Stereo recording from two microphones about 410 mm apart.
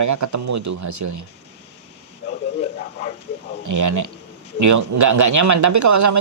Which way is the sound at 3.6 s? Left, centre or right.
Right.